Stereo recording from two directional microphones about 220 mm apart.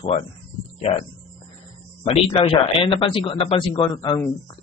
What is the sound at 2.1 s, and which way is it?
Speech, 25° left (ahead or behind).